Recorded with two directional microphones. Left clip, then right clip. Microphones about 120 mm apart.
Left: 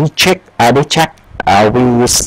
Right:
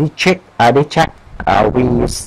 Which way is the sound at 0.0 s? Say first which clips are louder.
Left 3 dB; 30° left (ahead or behind).